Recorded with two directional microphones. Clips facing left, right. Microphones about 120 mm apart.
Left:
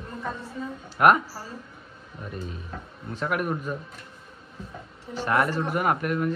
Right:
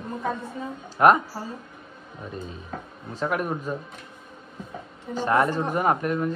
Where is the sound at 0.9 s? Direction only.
25° right (ahead or behind).